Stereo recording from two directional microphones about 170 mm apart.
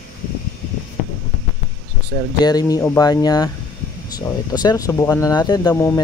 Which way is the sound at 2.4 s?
20° left (ahead or behind).